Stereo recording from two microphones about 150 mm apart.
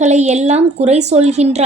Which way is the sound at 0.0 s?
50° right (ahead or behind).